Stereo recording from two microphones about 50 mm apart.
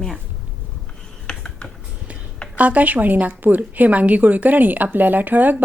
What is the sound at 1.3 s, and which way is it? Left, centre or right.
Computer keyboard, centre.